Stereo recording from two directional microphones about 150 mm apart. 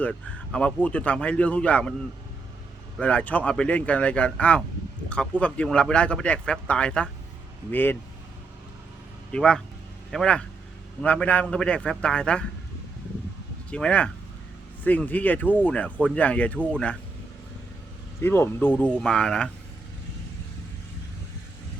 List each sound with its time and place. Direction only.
0.0 s speech: 5° left (ahead or behind)
3.0 s speech: 10° left (ahead or behind)
9.3 s speech: 5° left (ahead or behind)
13.7 s speech: 10° left (ahead or behind)
18.2 s speech: 15° left (ahead or behind)